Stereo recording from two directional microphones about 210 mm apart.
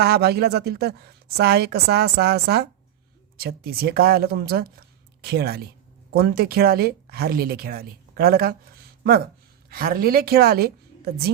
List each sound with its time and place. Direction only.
0.0 s a woman's voice: 50° right (ahead or behind)